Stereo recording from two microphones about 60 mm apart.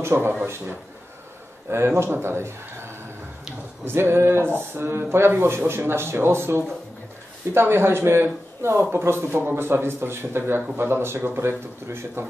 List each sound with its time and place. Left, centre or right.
0.0 s speech: right
1.7 s speech: right
3.8 s speech: right